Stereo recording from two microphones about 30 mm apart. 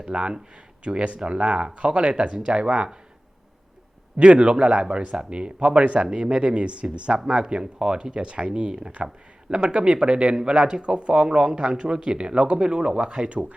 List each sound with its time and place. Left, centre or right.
0.1 s speech: right
4.2 s speech: right
6.1 s speech: right
7.6 s speech: right